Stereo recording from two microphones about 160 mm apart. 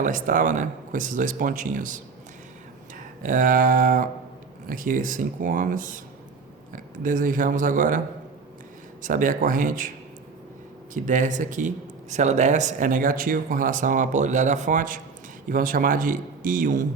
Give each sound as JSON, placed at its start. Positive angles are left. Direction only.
{"t": 0.0, "sound": "speech", "side_deg": -55}
{"t": 3.2, "sound": "speech", "side_deg": -55}
{"t": 10.9, "sound": "speech", "side_deg": -50}